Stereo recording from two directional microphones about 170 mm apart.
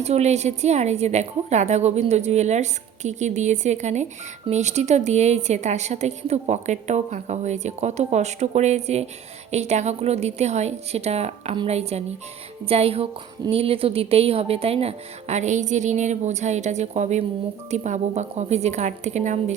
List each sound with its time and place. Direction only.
0.0 s a woman's voice: 40° right (ahead or behind)